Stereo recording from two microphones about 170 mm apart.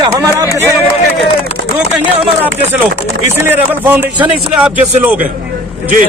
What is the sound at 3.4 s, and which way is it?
A man's voice, 10° right (ahead or behind).